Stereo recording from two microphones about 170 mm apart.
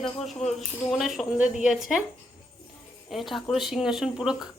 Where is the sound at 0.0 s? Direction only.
Centre (ahead or behind).